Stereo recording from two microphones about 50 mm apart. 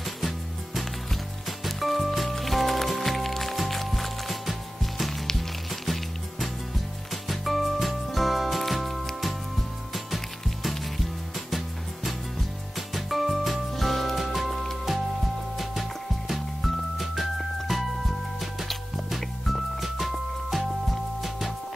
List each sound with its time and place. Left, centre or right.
1.6 s music: centre
7.2 s music: centre
16.3 s music: centre